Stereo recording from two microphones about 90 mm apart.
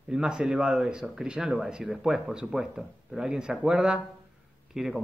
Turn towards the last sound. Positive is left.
turn(degrees=-5)  # may be behind; listen again after turning